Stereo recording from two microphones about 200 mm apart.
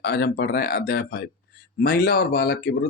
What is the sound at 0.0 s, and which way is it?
Speech, 50° left (ahead or behind).